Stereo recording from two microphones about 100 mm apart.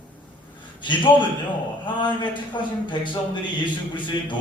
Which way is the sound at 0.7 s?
50° left (ahead or behind).